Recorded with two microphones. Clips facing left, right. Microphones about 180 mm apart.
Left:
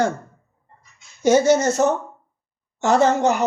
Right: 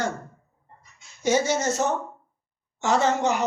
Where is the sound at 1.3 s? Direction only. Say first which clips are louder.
Left 7 dB; 65° left (ahead or behind).